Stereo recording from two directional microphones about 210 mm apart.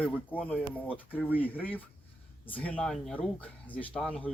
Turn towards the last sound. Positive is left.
turn(degrees=5)  # may be behind; listen again after turning